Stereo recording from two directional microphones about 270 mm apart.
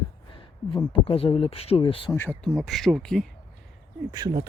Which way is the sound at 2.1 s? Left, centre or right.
Centre.